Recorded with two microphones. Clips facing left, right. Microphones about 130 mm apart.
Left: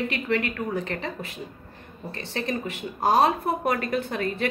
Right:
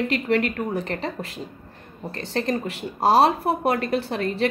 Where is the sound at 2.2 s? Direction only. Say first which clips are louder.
Right 4 dB; 40° right (ahead or behind).